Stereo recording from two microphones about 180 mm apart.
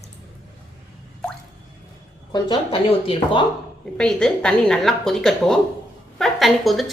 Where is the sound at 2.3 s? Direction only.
25° left (ahead or behind).